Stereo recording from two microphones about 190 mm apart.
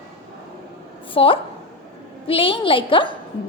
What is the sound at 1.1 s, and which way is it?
A woman's voice, 30° left (ahead or behind).